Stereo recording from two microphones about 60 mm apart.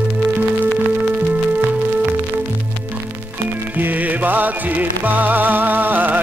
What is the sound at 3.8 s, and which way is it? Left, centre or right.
Music, right.